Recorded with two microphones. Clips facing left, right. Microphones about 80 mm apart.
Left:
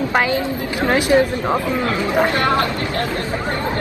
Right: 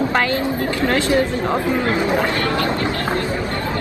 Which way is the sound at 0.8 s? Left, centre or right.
Centre.